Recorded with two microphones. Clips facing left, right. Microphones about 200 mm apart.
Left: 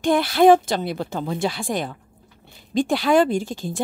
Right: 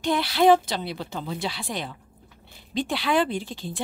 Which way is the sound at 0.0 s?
50° left (ahead or behind).